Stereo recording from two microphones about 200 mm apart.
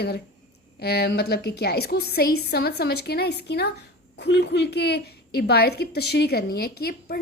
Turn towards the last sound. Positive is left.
turn(degrees=50)  # may be behind; listen again after turning